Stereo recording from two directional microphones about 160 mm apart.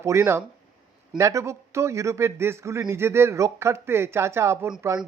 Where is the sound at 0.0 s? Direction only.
20° right (ahead or behind).